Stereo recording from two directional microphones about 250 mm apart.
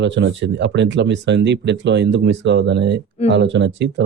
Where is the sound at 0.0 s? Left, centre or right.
Right.